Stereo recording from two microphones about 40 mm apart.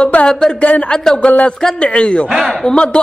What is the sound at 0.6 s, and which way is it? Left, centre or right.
Speech, left.